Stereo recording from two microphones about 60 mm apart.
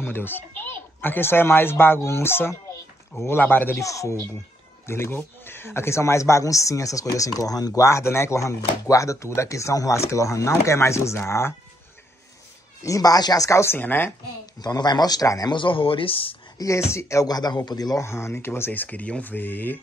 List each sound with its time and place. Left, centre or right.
0.0 s speech: left
2.0 s speech: left
3.7 s speech: left
4.8 s speech: left
12.8 s speech: left
13.7 s speech: left
14.6 s speech: left
16.5 s speech: left
18.0 s speech: left
18.7 s speech: left